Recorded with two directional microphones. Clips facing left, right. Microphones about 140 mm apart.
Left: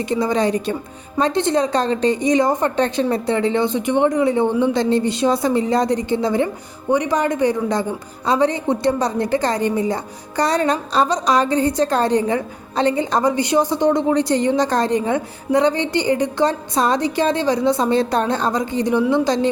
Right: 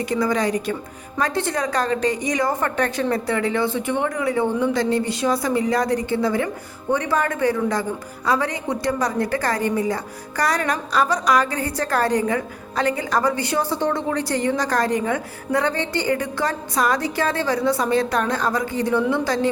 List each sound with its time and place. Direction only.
0.0 s a woman's voice: 25° left (ahead or behind)